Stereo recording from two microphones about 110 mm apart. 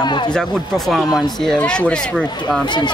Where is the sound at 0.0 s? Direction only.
45° left (ahead or behind).